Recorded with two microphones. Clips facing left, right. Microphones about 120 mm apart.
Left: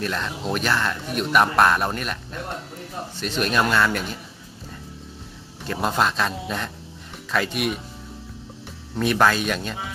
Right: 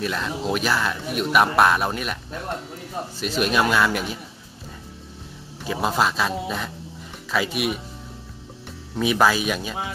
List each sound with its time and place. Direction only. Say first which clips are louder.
0.0 s speech: right 1 dB; 5° right (ahead or behind)
5.6 s speech: even; 5° right (ahead or behind)
8.9 s speech: even; 5° right (ahead or behind)